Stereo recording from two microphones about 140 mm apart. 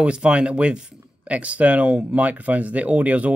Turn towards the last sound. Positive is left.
turn(degrees=-10)  # may be behind; listen again after turning